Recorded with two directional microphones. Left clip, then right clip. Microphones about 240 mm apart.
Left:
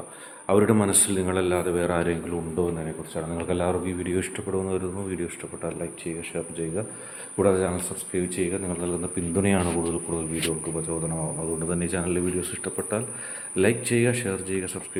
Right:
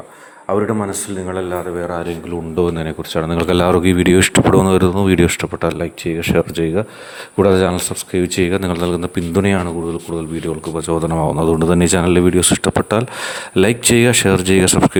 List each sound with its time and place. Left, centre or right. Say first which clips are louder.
0.4 s a man's voice: right 3 dB; centre
2.7 s speech: right 11 dB; right
10.8 s speech: right 13 dB; right